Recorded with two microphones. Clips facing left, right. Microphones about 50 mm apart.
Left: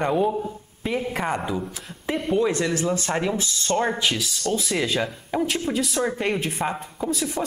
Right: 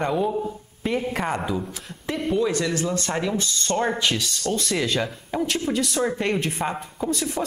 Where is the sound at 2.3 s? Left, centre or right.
Centre.